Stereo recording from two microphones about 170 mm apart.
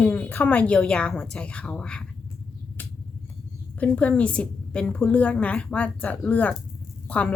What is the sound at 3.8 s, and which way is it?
A woman's voice, 10° left (ahead or behind).